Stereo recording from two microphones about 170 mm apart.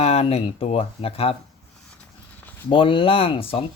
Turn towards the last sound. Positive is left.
turn(degrees=35)  # may be behind; listen again after turning